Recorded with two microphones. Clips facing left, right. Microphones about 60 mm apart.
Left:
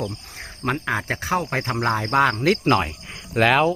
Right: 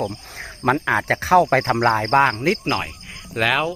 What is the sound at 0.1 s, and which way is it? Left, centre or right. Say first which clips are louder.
Cricket: right 3 dB; right.